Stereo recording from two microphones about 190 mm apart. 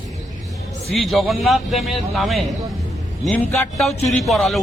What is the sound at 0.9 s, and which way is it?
A man's voice, centre (ahead or behind).